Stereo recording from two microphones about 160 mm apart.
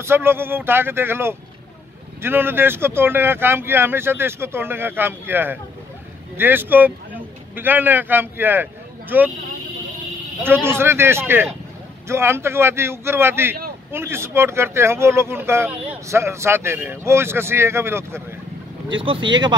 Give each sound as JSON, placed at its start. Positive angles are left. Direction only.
{"t": 0.0, "sound": "speech", "side_deg": -15}
{"t": 10.4, "sound": "speech", "side_deg": -15}
{"t": 18.9, "sound": "speech", "side_deg": -30}